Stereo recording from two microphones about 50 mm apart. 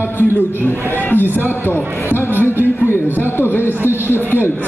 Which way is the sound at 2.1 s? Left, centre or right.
Right.